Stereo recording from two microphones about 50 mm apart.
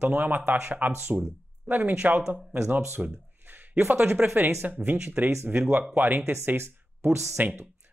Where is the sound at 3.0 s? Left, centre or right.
Right.